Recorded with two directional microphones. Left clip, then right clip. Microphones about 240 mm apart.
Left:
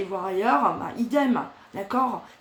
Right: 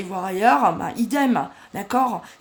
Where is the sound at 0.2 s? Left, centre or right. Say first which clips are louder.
Right 5 dB; right.